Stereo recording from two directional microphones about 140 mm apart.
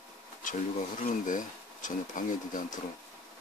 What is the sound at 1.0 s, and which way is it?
Speech, 65° left (ahead or behind).